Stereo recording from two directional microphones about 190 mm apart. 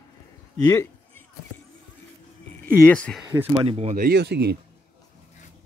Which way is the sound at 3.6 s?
35° right (ahead or behind).